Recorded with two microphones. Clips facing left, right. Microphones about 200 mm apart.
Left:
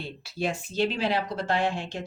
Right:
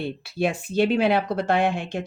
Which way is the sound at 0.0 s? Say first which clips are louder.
Right 6 dB; 60° right (ahead or behind).